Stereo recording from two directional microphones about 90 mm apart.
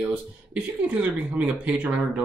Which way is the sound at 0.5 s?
15° right (ahead or behind).